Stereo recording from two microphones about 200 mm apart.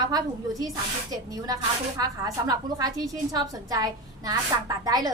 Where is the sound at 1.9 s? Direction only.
20° right (ahead or behind).